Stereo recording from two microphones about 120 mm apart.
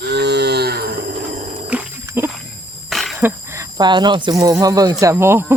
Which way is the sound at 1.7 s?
10° right (ahead or behind).